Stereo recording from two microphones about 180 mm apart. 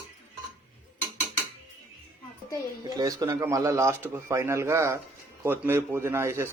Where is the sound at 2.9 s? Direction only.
20° right (ahead or behind).